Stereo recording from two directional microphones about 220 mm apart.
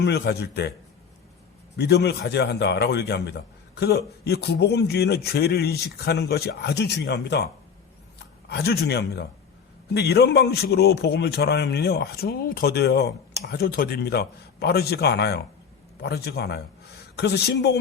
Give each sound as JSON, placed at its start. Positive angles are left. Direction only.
{"t": 0.0, "sound": "a man's voice", "side_deg": 50}
{"t": 1.7, "sound": "a man's voice", "side_deg": 50}
{"t": 8.4, "sound": "a man's voice", "side_deg": 45}